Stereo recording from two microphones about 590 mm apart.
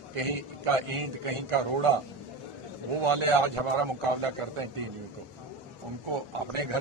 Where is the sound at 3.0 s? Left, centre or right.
Right.